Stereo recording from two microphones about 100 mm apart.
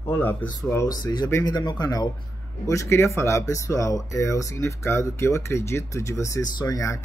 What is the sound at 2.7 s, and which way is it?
Speech, 30° left (ahead or behind).